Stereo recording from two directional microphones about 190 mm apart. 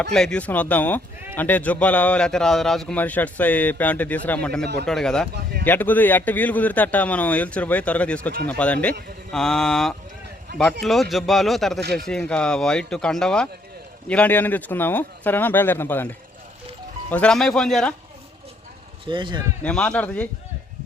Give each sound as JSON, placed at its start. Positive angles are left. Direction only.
{"t": 0.0, "sound": "a man's voice", "side_deg": 0}
{"t": 4.6, "sound": "speech", "side_deg": -60}
{"t": 4.9, "sound": "a man's voice", "side_deg": 5}
{"t": 19.0, "sound": "a man's voice", "side_deg": -25}
{"t": 19.6, "sound": "speech", "side_deg": 5}